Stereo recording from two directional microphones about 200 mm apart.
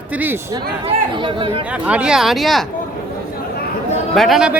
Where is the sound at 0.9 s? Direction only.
25° right (ahead or behind).